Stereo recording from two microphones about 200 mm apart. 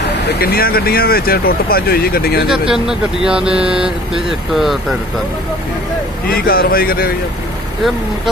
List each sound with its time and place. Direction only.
0.4 s speech: 50° left (ahead or behind)
2.4 s speech: 5° right (ahead or behind)
6.2 s speech: 50° left (ahead or behind)